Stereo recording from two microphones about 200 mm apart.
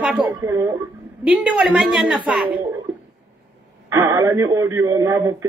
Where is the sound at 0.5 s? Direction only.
15° right (ahead or behind).